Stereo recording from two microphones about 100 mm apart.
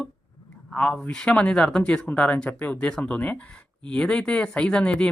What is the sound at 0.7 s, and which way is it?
Speech, 10° left (ahead or behind).